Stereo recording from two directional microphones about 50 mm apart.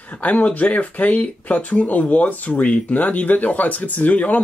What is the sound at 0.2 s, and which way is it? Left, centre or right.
Speech, left.